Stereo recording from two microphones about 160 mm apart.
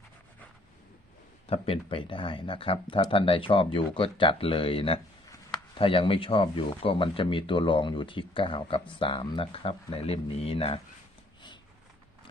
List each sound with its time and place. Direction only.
1.5 s speech: 35° left (ahead or behind)